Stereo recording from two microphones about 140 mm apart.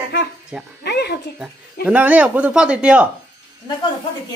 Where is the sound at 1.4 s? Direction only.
10° right (ahead or behind).